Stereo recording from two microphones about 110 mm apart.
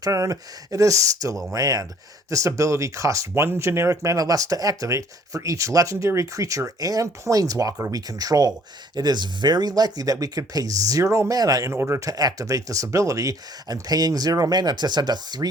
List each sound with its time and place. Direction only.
0.0 s speech: 30° right (ahead or behind)